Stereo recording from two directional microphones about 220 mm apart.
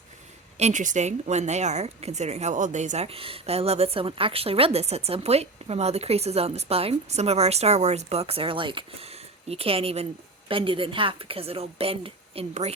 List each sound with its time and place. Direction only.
0.5 s a woman's voice: 30° right (ahead or behind)